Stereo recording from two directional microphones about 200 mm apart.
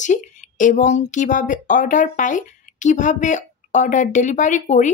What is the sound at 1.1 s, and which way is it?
Speech, 40° left (ahead or behind).